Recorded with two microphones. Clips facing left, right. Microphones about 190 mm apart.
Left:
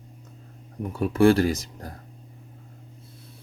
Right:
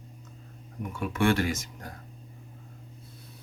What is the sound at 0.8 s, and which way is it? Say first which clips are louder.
Speech: left 8 dB; 35° left (ahead or behind).